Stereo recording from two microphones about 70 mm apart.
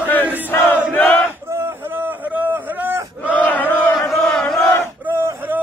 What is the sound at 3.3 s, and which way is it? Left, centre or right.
Battle cry, left.